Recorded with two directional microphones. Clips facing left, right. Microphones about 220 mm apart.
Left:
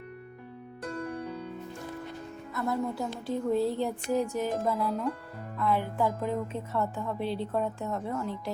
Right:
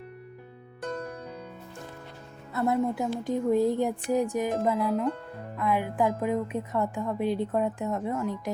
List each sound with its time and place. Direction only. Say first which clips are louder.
2.6 s a woman's voice: right 5 dB; 20° right (ahead or behind)